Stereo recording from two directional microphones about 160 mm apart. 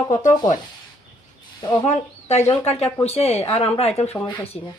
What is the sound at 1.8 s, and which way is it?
Speech, 45° left (ahead or behind).